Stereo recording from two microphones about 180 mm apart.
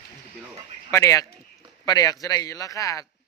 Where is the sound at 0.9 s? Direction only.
15° left (ahead or behind).